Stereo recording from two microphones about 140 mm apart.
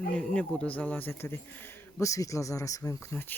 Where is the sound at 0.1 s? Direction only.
10° left (ahead or behind).